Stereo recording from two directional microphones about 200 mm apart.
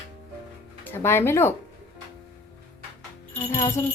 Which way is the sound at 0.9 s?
10° left (ahead or behind).